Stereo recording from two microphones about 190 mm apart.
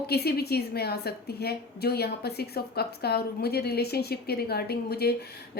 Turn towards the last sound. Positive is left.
turn(degrees=55)  # may be behind; listen again after turning